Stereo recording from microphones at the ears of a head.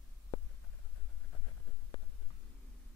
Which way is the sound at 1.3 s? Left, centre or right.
Left.